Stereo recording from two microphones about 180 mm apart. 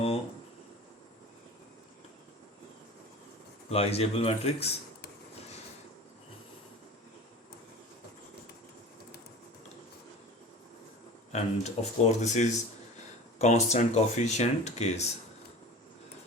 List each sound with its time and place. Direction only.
3.7 s speech: 35° left (ahead or behind)
11.3 s speech: 40° left (ahead or behind)